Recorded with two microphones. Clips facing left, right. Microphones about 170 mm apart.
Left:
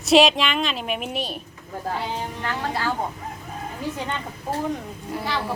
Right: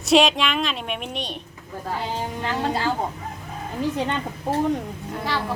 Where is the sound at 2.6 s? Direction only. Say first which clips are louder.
Right 3 dB; 25° right (ahead or behind).